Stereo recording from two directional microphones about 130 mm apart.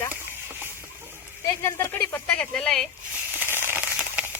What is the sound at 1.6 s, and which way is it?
Speech, 20° left (ahead or behind).